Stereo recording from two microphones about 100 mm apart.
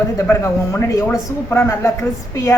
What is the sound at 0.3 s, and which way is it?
A woman's voice, 30° left (ahead or behind).